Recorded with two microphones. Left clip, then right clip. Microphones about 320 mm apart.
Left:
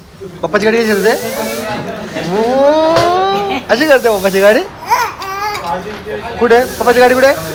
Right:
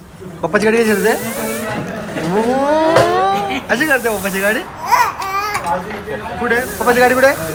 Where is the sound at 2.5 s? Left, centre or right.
Centre.